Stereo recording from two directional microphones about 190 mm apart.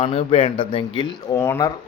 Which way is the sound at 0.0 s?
30° left (ahead or behind).